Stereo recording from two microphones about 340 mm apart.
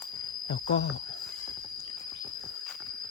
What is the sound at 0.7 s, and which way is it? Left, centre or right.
Speech, left.